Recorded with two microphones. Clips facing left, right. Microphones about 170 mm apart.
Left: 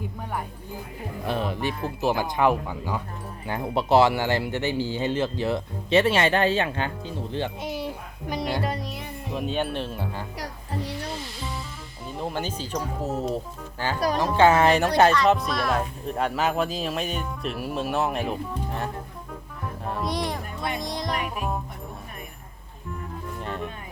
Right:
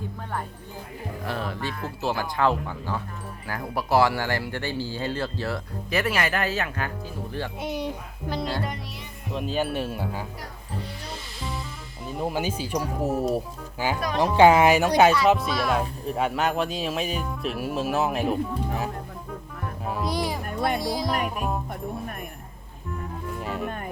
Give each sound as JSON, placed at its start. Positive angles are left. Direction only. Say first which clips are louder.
{"t": 1.2, "sound": "speech", "louder": "left 4 dB", "side_deg": 20}
{"t": 3.4, "sound": "speech", "louder": "left 4 dB", "side_deg": 25}
{"t": 7.6, "sound": "speech", "louder": "right 1 dB", "side_deg": 5}
{"t": 8.3, "sound": "speech", "louder": "left 1 dB", "side_deg": 15}
{"t": 9.3, "sound": "speech", "louder": "right 1 dB", "side_deg": 0}
{"t": 12.0, "sound": "speech", "louder": "right 3 dB", "side_deg": -5}
{"t": 19.8, "sound": "music", "louder": "right 1 dB", "side_deg": 0}
{"t": 20.7, "sound": "speech", "louder": "right 3 dB", "side_deg": -5}
{"t": 23.4, "sound": "music", "louder": "right 1 dB", "side_deg": -5}
{"t": 23.6, "sound": "music", "louder": "right 5 dB", "side_deg": -55}